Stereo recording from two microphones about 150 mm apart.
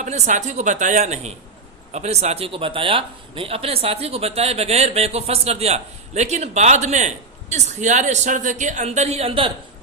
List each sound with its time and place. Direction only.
0.0 s a man's voice: 55° right (ahead or behind)